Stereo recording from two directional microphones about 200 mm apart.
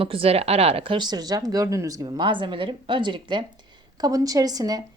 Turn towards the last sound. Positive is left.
turn(degrees=-20)  # may be behind; listen again after turning